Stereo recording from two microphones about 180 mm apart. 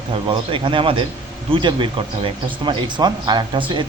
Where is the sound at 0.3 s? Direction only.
30° right (ahead or behind).